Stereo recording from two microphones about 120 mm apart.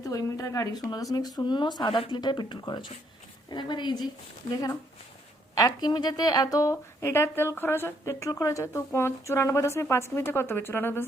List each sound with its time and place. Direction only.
0.0 s a woman's voice: 30° left (ahead or behind)
5.5 s a woman's voice: 30° left (ahead or behind)